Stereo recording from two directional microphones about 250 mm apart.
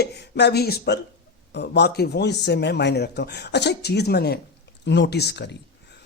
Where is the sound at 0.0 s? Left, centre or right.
Left.